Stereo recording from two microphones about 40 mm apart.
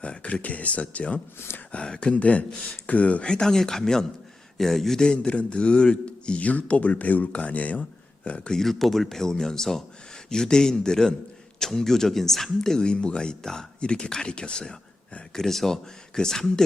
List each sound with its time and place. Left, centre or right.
0.0 s speech: left
2.5 s speech: left
2.8 s speech: left
3.2 s speech: centre
4.9 s speech: left
8.5 s speech: centre